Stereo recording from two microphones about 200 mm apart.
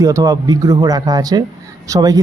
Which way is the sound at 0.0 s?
15° right (ahead or behind).